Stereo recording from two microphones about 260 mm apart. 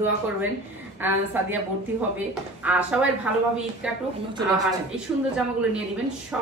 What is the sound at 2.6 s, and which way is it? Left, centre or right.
Speech, centre.